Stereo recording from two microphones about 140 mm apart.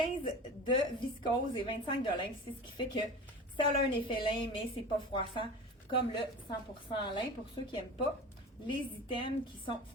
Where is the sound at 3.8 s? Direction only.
35° left (ahead or behind).